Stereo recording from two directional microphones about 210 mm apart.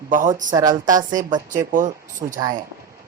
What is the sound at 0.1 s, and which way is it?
A woman's voice, 40° right (ahead or behind).